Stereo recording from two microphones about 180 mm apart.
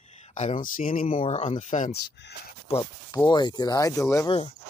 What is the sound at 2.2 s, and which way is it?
Speech, 75° left (ahead or behind).